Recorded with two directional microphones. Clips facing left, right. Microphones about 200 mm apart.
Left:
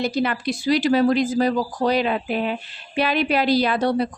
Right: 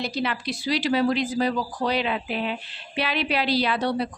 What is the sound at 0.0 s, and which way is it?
Speech, 50° left (ahead or behind).